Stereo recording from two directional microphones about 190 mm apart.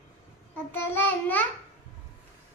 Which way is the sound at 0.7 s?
10° left (ahead or behind).